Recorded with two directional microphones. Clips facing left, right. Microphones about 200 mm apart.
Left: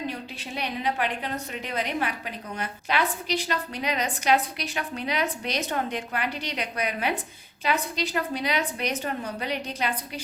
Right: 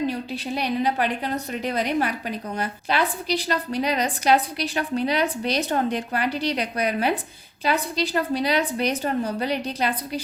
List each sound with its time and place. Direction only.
0.1 s a woman's voice: 35° right (ahead or behind)